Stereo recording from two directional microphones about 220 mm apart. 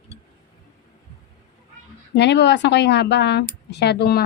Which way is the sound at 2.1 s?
50° left (ahead or behind).